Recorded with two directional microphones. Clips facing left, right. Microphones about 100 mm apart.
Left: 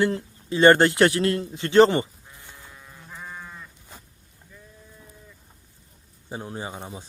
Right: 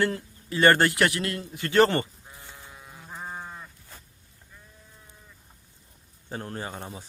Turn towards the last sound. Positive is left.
turn(degrees=10)  # may be behind; listen again after turning